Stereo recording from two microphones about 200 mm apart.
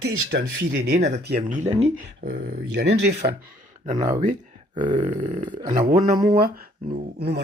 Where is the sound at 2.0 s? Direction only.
55° right (ahead or behind).